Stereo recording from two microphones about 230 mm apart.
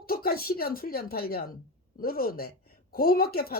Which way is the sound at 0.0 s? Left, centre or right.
Left.